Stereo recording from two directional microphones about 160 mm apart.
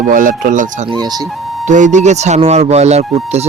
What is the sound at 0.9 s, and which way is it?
Speech, 25° right (ahead or behind).